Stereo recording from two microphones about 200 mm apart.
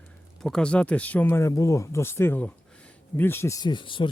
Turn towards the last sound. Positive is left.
turn(degrees=25)  # may be behind; listen again after turning